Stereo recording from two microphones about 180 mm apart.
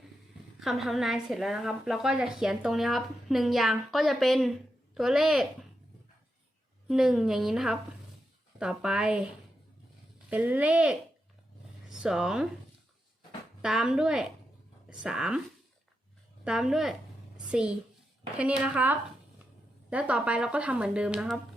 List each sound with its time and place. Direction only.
0.6 s a woman's voice: centre (ahead or behind)
6.8 s a woman's voice: centre (ahead or behind)
13.6 s a woman's voice: 5° right (ahead or behind)
16.4 s a woman's voice: 5° right (ahead or behind)
17.3 s a sound: 5° right (ahead or behind)
18.3 s speech: 5° right (ahead or behind)